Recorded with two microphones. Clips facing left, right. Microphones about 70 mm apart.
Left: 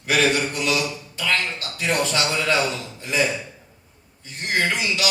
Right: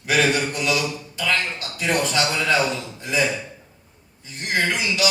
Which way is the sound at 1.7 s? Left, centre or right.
Right.